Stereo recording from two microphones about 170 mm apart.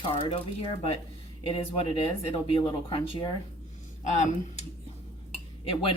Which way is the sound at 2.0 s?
35° left (ahead or behind).